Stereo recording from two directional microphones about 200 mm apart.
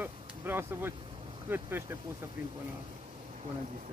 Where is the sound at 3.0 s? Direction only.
35° right (ahead or behind).